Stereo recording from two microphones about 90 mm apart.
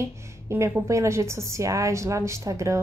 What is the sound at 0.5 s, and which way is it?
A woman's voice, 30° right (ahead or behind).